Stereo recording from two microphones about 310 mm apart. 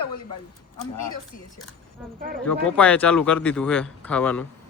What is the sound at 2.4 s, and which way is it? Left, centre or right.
Speech, centre.